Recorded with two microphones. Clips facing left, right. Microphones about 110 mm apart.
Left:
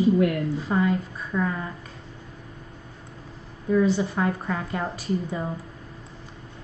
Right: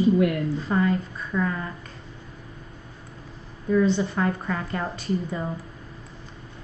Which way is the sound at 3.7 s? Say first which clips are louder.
Even; 10° left (ahead or behind).